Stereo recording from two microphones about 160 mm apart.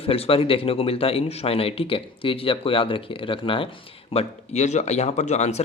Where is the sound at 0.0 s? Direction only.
35° left (ahead or behind).